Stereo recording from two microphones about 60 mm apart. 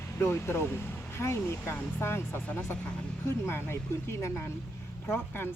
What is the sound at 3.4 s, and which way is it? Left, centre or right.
Speech, left.